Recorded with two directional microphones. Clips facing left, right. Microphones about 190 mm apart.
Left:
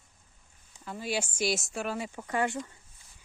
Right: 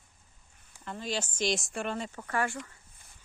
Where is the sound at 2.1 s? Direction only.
15° left (ahead or behind).